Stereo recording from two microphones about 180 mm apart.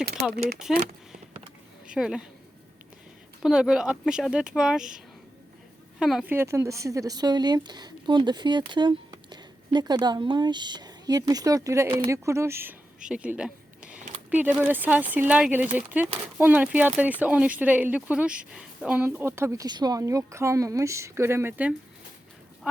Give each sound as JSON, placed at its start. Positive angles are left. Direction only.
{"t": 0.7, "sound": "speech", "side_deg": 0}
{"t": 1.9, "sound": "speech", "side_deg": -5}
{"t": 3.4, "sound": "speech", "side_deg": -5}
{"t": 6.3, "sound": "a woman's voice", "side_deg": -15}